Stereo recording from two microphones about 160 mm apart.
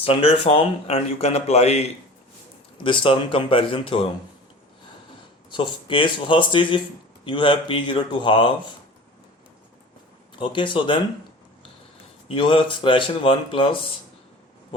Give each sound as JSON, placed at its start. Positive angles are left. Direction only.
{"t": 0.0, "sound": "speech", "side_deg": 35}
{"t": 2.8, "sound": "speech", "side_deg": 35}
{"t": 5.5, "sound": "speech", "side_deg": 30}
{"t": 10.3, "sound": "speech", "side_deg": 30}
{"t": 12.3, "sound": "speech", "side_deg": 35}